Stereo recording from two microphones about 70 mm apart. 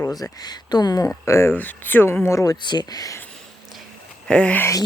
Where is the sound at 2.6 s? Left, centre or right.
Left.